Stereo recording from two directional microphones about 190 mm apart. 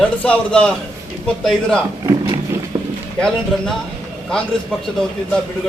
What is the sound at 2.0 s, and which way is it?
Roaring cats, 20° right (ahead or behind).